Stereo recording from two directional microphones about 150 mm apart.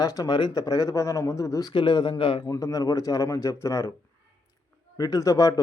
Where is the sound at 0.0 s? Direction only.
25° left (ahead or behind).